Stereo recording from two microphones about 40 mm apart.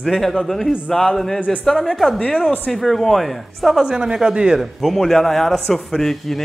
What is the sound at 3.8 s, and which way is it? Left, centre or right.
Speech, centre.